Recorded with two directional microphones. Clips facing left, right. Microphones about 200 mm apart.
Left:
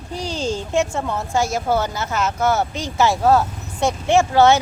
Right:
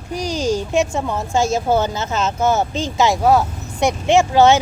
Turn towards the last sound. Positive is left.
turn(degrees=-15)  # may be behind; listen again after turning